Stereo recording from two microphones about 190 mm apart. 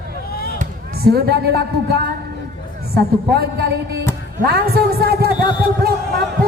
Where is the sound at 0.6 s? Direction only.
55° right (ahead or behind).